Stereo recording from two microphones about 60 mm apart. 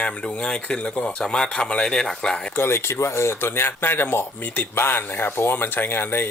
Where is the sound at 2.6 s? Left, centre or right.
Left.